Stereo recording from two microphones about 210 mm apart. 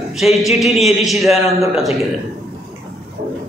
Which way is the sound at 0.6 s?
Centre (ahead or behind).